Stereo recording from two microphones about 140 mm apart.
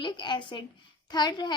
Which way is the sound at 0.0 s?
35° left (ahead or behind).